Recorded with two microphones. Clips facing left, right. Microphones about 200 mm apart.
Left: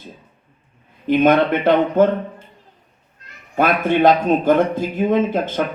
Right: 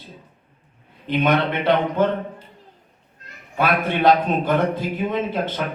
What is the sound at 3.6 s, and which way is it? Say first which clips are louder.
Speech: left 4 dB; 45° left (ahead or behind).